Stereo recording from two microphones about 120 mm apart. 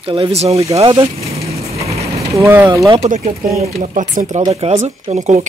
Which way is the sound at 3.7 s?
80° right.